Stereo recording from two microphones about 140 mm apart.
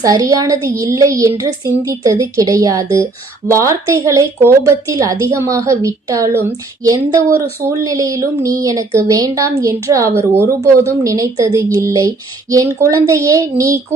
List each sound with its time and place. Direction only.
0.0 s speech: 25° right (ahead or behind)